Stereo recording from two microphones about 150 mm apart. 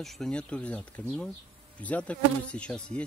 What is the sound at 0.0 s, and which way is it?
Speech, centre (ahead or behind).